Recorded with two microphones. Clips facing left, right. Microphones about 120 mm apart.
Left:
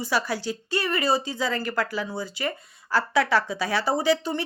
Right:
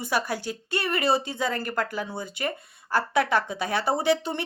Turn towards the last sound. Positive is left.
turn(degrees=-55)  # may be behind; listen again after turning